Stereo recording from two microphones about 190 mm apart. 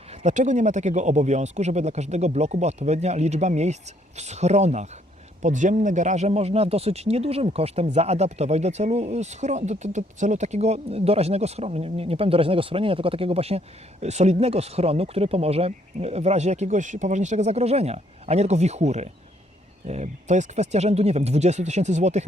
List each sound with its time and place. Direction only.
0.2 s speech: 40° right (ahead or behind)